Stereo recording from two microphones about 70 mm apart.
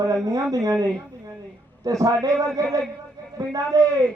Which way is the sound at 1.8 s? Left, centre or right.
Right.